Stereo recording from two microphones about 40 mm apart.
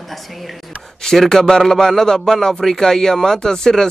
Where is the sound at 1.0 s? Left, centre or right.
Centre.